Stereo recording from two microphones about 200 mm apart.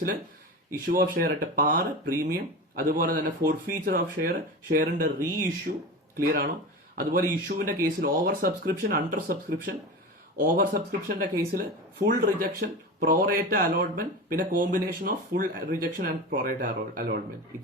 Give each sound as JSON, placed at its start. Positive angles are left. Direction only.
{"t": 0.9, "sound": "speech", "side_deg": -45}